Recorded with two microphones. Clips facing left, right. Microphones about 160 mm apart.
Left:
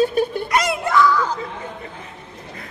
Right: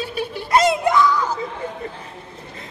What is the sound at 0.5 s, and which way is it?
Speech, 20° right (ahead or behind).